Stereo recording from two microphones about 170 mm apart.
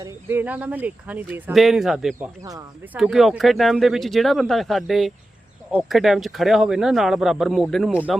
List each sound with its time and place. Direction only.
0.0 s speech: 15° right (ahead or behind)
2.1 s speech: 15° right (ahead or behind)
2.9 s speech: centre (ahead or behind)